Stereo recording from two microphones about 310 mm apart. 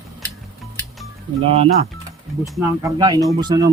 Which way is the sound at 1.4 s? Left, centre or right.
Centre.